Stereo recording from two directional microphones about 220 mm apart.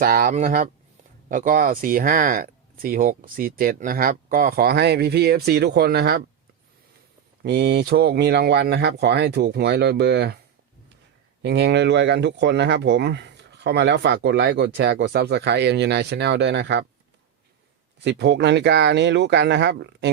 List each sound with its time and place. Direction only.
0.0 s speech: 40° right (ahead or behind)
7.4 s speech: 50° right (ahead or behind)
11.4 s speech: 50° right (ahead or behind)
18.0 s speech: 50° right (ahead or behind)